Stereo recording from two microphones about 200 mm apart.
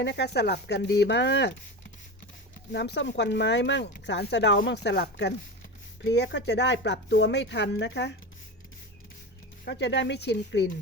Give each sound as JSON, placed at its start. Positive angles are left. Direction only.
{"t": 0.0, "sound": "speech", "side_deg": 55}
{"t": 2.7, "sound": "speech", "side_deg": 60}
{"t": 9.6, "sound": "speech", "side_deg": 60}